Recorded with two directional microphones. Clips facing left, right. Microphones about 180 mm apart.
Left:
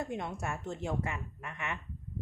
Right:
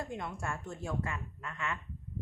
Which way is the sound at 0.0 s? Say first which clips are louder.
Left 2 dB; 20° left (ahead or behind).